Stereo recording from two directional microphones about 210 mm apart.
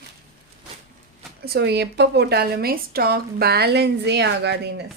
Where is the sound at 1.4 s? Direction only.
50° right (ahead or behind).